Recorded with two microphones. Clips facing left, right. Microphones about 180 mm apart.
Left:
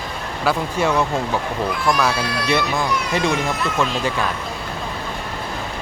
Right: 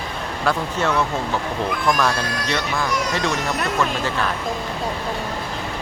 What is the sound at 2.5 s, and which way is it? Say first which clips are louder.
Speech: left 4 dB; 20° left (ahead or behind).